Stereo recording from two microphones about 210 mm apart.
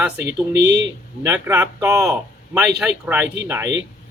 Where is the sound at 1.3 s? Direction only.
10° right (ahead or behind).